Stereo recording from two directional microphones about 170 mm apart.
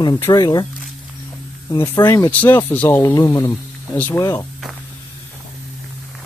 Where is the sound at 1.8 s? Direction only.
20° left (ahead or behind).